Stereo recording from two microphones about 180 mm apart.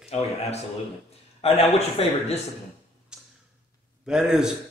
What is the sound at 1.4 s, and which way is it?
Speech, 35° left (ahead or behind).